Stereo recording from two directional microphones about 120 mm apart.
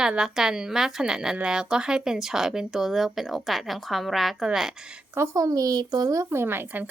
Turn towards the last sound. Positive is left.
turn(degrees=-15)  # may be behind; listen again after turning